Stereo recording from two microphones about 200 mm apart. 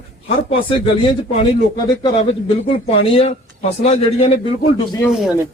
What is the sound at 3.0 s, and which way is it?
Speech, 30° left (ahead or behind).